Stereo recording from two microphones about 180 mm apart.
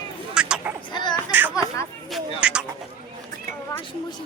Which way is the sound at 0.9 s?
25° left (ahead or behind).